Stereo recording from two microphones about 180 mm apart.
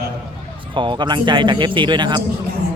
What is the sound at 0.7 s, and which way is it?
A man's voice, 25° right (ahead or behind).